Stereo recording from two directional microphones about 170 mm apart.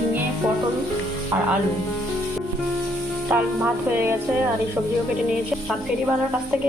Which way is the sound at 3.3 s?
10° right (ahead or behind).